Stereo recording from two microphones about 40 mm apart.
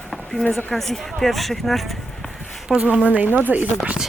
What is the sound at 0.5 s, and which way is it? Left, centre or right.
A woman's voice, centre.